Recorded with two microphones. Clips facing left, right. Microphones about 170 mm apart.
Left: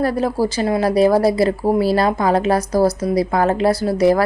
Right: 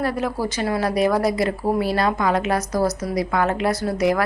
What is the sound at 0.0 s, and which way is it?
Speech, 35° left (ahead or behind).